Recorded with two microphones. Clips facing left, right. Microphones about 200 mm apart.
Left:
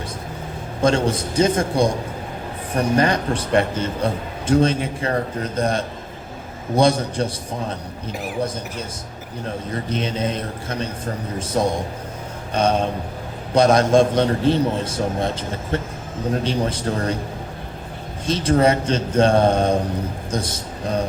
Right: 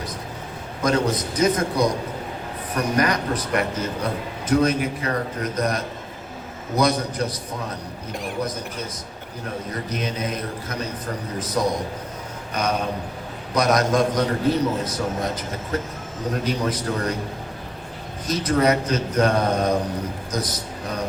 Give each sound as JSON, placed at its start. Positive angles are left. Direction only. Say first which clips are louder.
{"t": 0.8, "sound": "a man's voice", "louder": "left 3 dB", "side_deg": 30}
{"t": 9.9, "sound": "a man's voice", "louder": "left 4 dB", "side_deg": 30}
{"t": 18.3, "sound": "a man's voice", "louder": "left 3 dB", "side_deg": 30}